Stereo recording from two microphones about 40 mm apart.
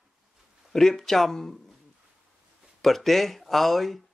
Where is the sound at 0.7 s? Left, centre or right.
Centre.